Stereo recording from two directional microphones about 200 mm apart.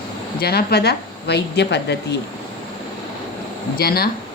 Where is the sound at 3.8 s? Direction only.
50° left (ahead or behind).